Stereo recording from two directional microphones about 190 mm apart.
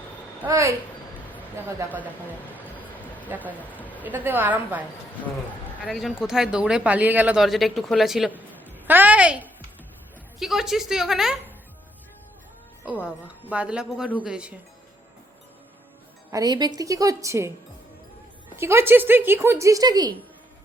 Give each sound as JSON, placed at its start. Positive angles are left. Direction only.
{"t": 0.4, "sound": "speech", "side_deg": -15}
{"t": 3.2, "sound": "speech", "side_deg": -10}
{"t": 3.6, "sound": "a woman's voice", "side_deg": 10}
{"t": 4.0, "sound": "speech", "side_deg": -10}
{"t": 5.8, "sound": "speech", "side_deg": 0}
{"t": 8.6, "sound": "a sound", "side_deg": -10}
{"t": 10.4, "sound": "speech", "side_deg": 0}
{"t": 13.1, "sound": "speech", "side_deg": -5}
{"t": 16.3, "sound": "speech", "side_deg": -20}
{"t": 18.5, "sound": "speech", "side_deg": -15}